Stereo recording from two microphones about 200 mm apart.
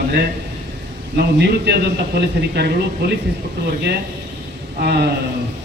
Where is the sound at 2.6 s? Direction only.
55° right (ahead or behind).